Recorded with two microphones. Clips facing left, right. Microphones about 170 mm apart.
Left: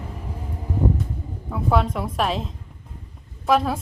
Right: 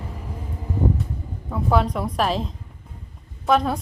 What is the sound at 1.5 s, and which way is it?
A woman's voice, centre (ahead or behind).